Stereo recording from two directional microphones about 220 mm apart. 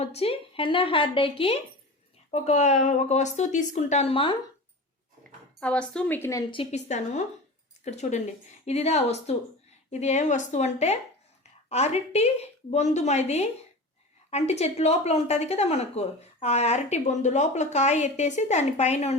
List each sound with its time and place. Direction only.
0.0 s a woman's voice: 30° left (ahead or behind)
5.5 s a woman's voice: 5° left (ahead or behind); by 19.1 s 30° left (ahead or behind)